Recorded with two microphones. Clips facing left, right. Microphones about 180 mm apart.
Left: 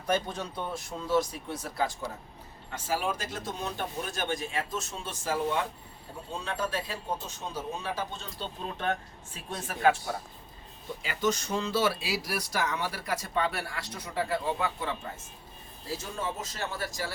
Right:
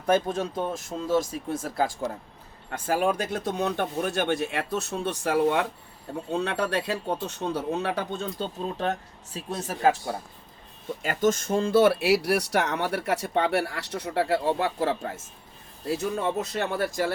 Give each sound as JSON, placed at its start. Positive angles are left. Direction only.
{"t": 0.0, "sound": "speech", "side_deg": -50}
{"t": 8.8, "sound": "speech", "side_deg": -40}
{"t": 11.0, "sound": "speech", "side_deg": -50}
{"t": 15.9, "sound": "speech", "side_deg": -65}